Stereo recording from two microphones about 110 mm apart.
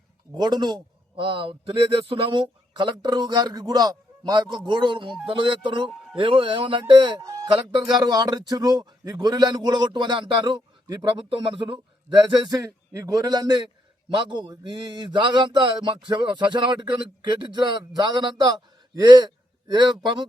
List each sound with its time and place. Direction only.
0.3 s a man's voice: 40° right (ahead or behind)
7.2 s a man's voice: 30° right (ahead or behind); by 12.1 s 50° right (ahead or behind)
12.5 s a man's voice: 35° right (ahead or behind)